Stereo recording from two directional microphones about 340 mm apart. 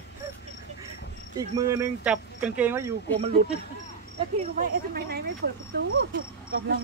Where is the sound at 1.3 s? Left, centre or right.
Centre.